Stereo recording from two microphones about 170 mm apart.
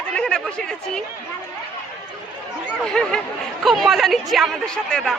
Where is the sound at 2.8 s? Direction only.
5° left (ahead or behind).